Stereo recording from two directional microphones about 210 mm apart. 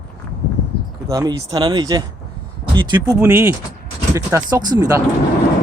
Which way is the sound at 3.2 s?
10° right (ahead or behind).